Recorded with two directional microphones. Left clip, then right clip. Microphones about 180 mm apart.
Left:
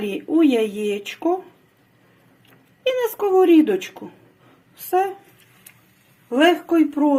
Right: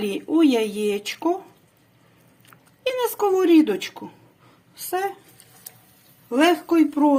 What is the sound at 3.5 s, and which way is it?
Speech, 30° right (ahead or behind).